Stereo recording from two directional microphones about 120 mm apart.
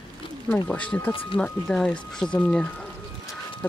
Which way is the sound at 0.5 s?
10° left (ahead or behind).